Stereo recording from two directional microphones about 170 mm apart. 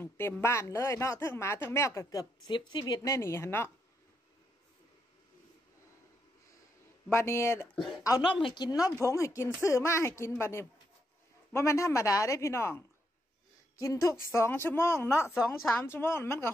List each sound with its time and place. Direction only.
0.0 s speech: 15° left (ahead or behind)
7.2 s speech: 15° left (ahead or behind)
8.0 s a woman's voice: 25° left (ahead or behind)